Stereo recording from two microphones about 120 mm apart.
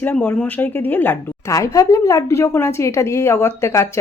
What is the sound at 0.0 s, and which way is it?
A woman's voice, 15° left (ahead or behind).